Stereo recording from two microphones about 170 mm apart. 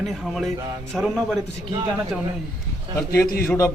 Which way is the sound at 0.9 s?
Centre (ahead or behind).